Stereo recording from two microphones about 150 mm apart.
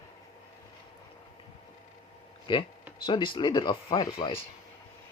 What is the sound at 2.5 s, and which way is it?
Speech, 30° left (ahead or behind).